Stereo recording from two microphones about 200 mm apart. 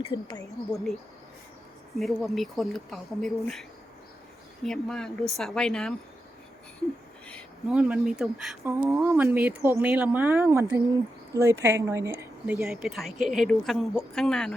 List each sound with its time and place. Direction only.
0.1 s speech: 20° left (ahead or behind)
2.0 s speech: centre (ahead or behind)
7.3 s speech: centre (ahead or behind)
8.6 s speech: 15° right (ahead or behind)
12.6 s speech: centre (ahead or behind)